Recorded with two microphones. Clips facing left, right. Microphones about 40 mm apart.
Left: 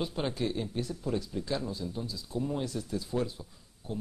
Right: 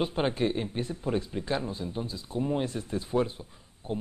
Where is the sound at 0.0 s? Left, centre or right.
Right.